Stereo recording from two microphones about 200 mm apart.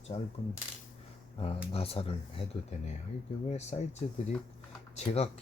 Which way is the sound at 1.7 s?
30° left (ahead or behind).